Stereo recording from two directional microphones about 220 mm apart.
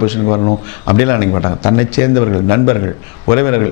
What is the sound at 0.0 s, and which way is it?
A man's voice, 15° left (ahead or behind).